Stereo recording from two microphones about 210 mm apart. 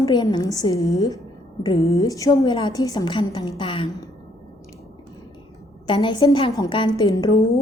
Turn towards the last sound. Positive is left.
turn(degrees=15)  # may be behind; listen again after turning